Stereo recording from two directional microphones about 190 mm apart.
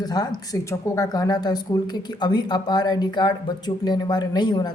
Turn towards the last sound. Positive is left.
turn(degrees=20)  # may be behind; listen again after turning